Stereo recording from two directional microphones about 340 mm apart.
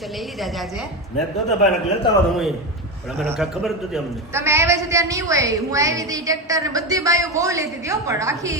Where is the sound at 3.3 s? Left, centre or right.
Centre.